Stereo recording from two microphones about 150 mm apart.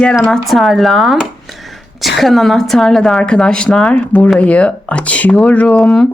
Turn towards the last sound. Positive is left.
turn(degrees=5)  # may be behind; listen again after turning